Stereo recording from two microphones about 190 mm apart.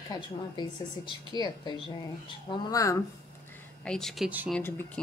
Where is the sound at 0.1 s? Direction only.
20° left (ahead or behind).